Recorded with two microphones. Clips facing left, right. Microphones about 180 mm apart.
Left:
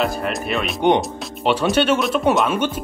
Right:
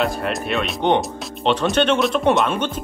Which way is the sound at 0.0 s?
Centre (ahead or behind).